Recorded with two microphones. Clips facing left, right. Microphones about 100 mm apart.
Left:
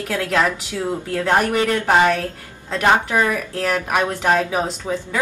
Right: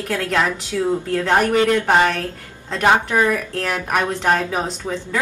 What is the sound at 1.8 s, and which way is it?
A woman's voice, 5° left (ahead or behind).